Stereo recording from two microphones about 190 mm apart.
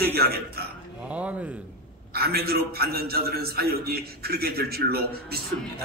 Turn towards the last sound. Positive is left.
turn(degrees=-55)  # may be behind; listen again after turning